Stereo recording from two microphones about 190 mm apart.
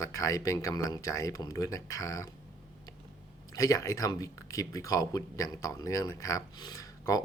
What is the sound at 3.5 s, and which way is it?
Speech, 20° left (ahead or behind).